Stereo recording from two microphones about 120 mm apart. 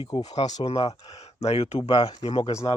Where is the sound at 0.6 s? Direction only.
55° left (ahead or behind).